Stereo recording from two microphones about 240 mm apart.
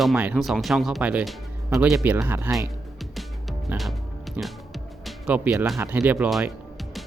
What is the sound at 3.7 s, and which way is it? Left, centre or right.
Speech, centre.